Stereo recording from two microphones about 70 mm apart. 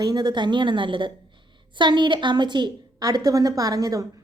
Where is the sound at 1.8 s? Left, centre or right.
Right.